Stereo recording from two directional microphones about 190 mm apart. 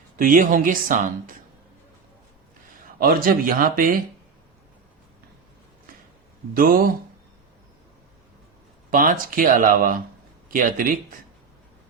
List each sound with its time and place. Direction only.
0.2 s speech: 45° right (ahead or behind)
3.0 s speech: 50° right (ahead or behind)
6.5 s speech: 50° right (ahead or behind)
8.9 s speech: 45° right (ahead or behind)